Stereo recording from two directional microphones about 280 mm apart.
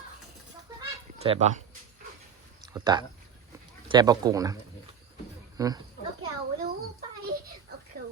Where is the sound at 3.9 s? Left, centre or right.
Centre.